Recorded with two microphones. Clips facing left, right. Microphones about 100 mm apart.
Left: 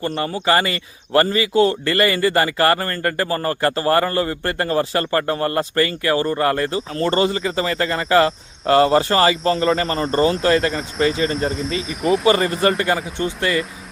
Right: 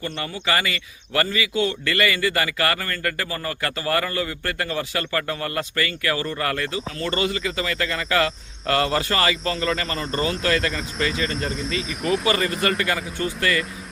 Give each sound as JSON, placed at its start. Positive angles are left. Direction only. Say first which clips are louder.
{"t": 0.0, "sound": "speech", "louder": "left 7 dB", "side_deg": 35}
{"t": 11.3, "sound": "speech", "louder": "left 4 dB", "side_deg": 0}
{"t": 12.3, "sound": "speech", "louder": "left 5 dB", "side_deg": 35}